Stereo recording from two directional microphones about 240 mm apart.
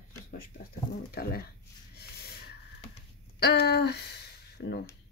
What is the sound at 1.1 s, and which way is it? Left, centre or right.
Speech, left.